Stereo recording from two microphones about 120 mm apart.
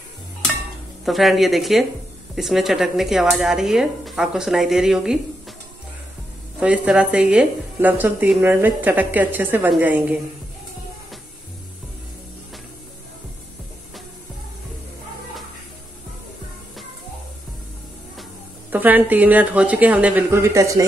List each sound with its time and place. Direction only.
1.0 s speech: centre (ahead or behind)
6.6 s a woman's voice: 10° right (ahead or behind)
18.7 s a woman's voice: 15° right (ahead or behind)
20.2 s speech: 25° right (ahead or behind)